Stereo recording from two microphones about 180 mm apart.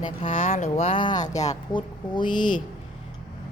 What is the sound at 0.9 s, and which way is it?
Speech, 25° left (ahead or behind).